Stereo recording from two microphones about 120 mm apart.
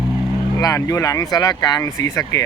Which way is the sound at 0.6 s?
30° left (ahead or behind).